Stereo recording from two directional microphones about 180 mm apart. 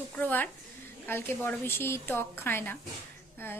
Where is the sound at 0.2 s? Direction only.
10° left (ahead or behind).